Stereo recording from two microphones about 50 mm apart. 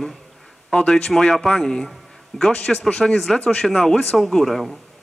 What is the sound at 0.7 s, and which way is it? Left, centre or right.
Speech, left.